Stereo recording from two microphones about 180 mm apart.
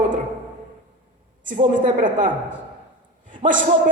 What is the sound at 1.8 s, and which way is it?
A woman's voice, 45° right (ahead or behind).